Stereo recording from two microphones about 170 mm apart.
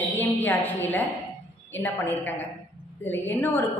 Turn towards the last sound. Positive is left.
turn(degrees=10)  # may be behind; listen again after turning